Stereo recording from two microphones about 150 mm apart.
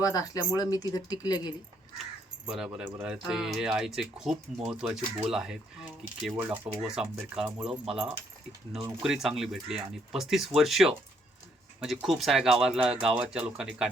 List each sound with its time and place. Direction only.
0.0 s speech: 20° left (ahead or behind)
2.5 s speech: 5° right (ahead or behind)